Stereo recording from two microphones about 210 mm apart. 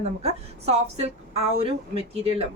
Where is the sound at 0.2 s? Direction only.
30° right (ahead or behind).